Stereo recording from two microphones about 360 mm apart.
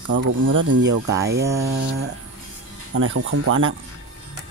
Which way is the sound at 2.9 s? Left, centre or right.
Right.